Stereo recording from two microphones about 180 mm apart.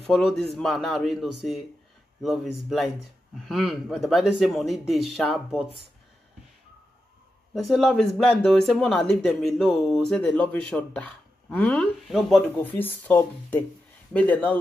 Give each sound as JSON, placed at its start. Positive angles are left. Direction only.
{"t": 0.0, "sound": "speech", "side_deg": 5}
{"t": 7.5, "sound": "speech", "side_deg": 0}
{"t": 12.5, "sound": "speech", "side_deg": 10}